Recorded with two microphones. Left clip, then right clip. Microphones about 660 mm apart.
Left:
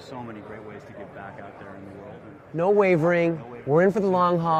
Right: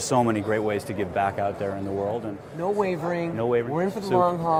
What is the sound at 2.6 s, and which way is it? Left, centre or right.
Speech, left.